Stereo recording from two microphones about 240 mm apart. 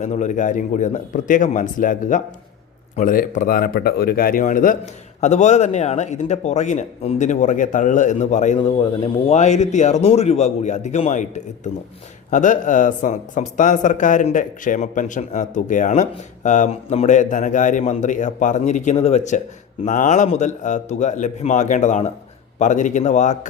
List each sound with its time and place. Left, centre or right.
0.0 s a man's voice: left